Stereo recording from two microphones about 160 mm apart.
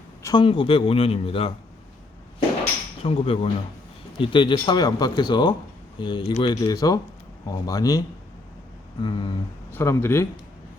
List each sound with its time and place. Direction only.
0.2 s a sound: 20° left (ahead or behind)
0.4 s a man's voice: 35° left (ahead or behind)
3.0 s a man's voice: 35° left (ahead or behind)
9.7 s speech: 15° left (ahead or behind)